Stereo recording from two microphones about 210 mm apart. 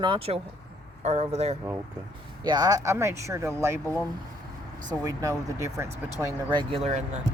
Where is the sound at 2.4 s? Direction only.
20° right (ahead or behind).